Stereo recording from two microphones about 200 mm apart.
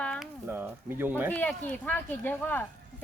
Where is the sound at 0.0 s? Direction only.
5° left (ahead or behind).